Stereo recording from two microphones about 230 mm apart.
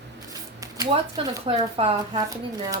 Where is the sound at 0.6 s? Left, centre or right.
Centre.